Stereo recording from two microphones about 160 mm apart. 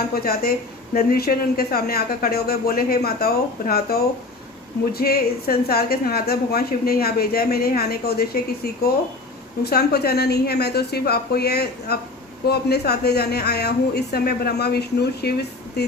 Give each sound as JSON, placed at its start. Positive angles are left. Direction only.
{"t": 0.1, "sound": "a woman's voice", "side_deg": 70}